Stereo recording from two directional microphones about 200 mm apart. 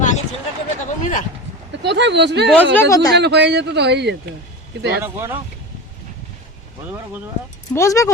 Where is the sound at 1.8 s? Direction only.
60° right (ahead or behind).